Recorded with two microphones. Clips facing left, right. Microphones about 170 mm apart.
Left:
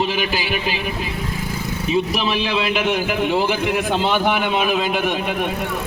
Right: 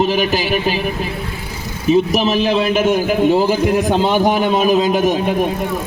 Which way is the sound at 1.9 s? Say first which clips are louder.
Right 7 dB; 45° right (ahead or behind).